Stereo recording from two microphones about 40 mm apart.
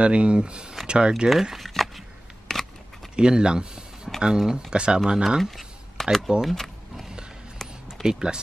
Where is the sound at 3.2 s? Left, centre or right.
Right.